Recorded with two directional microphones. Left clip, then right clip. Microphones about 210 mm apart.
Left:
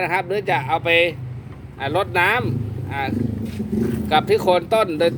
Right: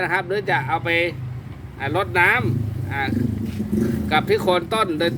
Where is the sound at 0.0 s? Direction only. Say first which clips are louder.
Left 1 dB; 15° left (ahead or behind).